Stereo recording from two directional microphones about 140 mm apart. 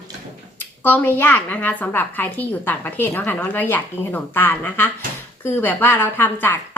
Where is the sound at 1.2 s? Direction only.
10° left (ahead or behind).